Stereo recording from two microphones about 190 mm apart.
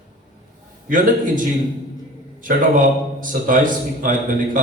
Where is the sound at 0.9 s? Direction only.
45° right (ahead or behind).